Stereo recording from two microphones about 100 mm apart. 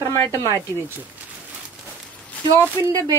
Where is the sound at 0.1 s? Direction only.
25° left (ahead or behind).